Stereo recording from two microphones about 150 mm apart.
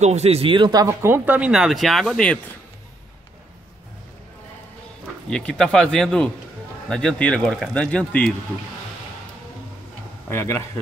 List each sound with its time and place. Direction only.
0.0 s speech: 45° right (ahead or behind); by 2.3 s 5° left (ahead or behind)
5.3 s speech: 5° left (ahead or behind)
10.3 s a man's voice: 15° left (ahead or behind)